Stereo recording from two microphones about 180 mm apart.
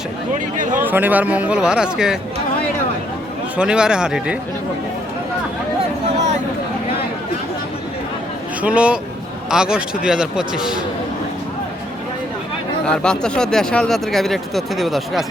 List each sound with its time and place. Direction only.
0.3 s speech: 45° right (ahead or behind)
0.8 s speech: 10° right (ahead or behind)
3.6 s speech: 5° right (ahead or behind)
8.6 s speech: 5° right (ahead or behind)
12.8 s speech: 5° left (ahead or behind)